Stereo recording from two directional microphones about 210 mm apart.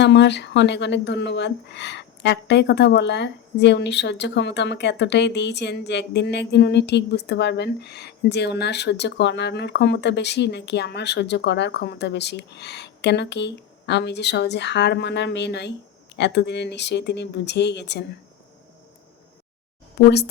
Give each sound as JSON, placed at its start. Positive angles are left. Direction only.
{"t": 0.0, "sound": "a woman's voice", "side_deg": 55}